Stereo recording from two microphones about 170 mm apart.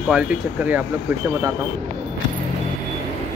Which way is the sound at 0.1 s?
10° right (ahead or behind).